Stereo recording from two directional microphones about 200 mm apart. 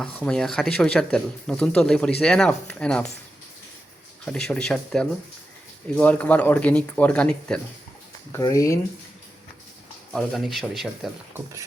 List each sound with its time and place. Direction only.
0.0 s speech: 5° left (ahead or behind)
4.3 s speech: 5° left (ahead or behind)
8.3 s speech: 15° left (ahead or behind)
10.1 s speech: centre (ahead or behind)